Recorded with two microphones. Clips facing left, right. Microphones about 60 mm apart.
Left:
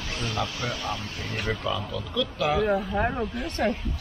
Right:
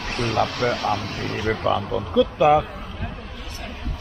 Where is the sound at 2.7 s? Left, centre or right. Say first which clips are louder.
Left 10 dB; left.